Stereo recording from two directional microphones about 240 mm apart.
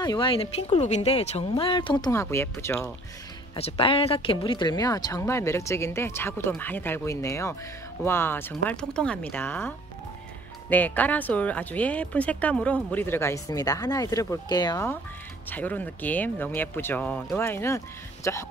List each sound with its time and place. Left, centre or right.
0.0 s speech: centre
3.5 s speech: left